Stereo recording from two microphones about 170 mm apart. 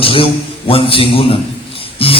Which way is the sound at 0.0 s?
30° left (ahead or behind).